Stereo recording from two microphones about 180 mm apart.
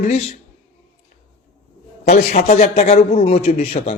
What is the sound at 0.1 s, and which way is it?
Speech, 35° left (ahead or behind).